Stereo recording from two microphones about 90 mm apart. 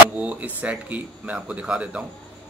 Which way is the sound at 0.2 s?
15° right (ahead or behind).